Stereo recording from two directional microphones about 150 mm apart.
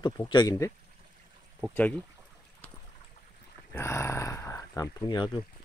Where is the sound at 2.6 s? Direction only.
10° left (ahead or behind).